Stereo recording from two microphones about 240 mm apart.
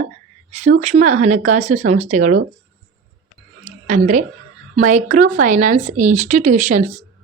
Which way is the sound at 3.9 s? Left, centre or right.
Right.